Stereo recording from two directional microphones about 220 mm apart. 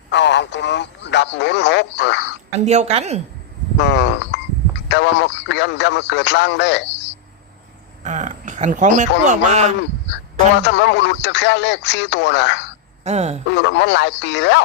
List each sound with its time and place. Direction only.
0.1 s a man's voice: 50° left (ahead or behind)
2.5 s speech: 30° right (ahead or behind)
3.8 s a man's voice: 55° left (ahead or behind)
8.0 s speech: 35° right (ahead or behind)
10.1 s a man's voice: 55° left (ahead or behind)
13.1 s speech: 30° right (ahead or behind)
13.5 s a man's voice: 55° left (ahead or behind)